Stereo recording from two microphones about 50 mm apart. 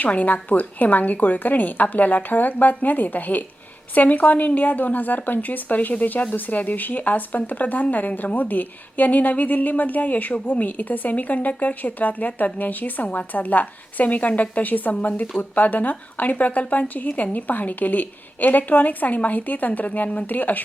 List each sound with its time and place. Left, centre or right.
0.0 s speech: left